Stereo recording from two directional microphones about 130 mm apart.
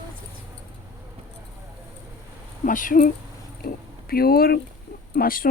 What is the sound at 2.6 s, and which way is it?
Speech, 90° left.